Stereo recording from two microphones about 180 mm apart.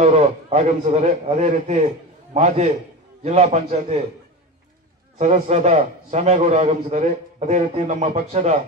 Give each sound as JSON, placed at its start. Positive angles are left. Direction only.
{"t": 0.0, "sound": "a man's voice", "side_deg": -35}
{"t": 5.2, "sound": "a man's voice", "side_deg": -40}